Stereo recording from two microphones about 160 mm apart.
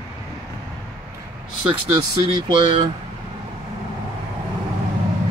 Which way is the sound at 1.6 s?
30° right (ahead or behind).